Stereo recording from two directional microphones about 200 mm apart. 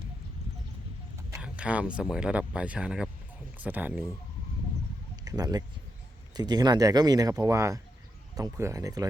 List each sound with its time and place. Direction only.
1.3 s speech: 5° right (ahead or behind)
5.2 s speech: 15° right (ahead or behind)